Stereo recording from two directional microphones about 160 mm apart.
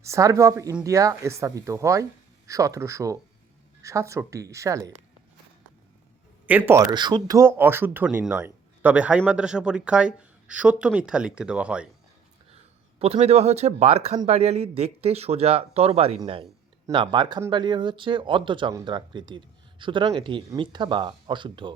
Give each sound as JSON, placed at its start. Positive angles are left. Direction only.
{"t": 0.0, "sound": "speech", "side_deg": -20}
{"t": 6.5, "sound": "speech", "side_deg": -10}
{"t": 6.9, "sound": "speech", "side_deg": -25}
{"t": 13.0, "sound": "speech", "side_deg": -40}